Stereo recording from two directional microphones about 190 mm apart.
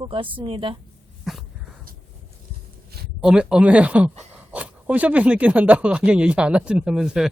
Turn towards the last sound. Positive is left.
turn(degrees=-5)  # may be behind; listen again after turning